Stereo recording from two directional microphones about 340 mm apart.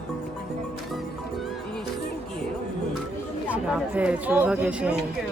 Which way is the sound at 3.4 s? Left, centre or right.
Centre.